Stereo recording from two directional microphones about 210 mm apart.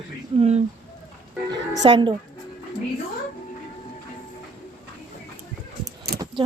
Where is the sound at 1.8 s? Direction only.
25° right (ahead or behind).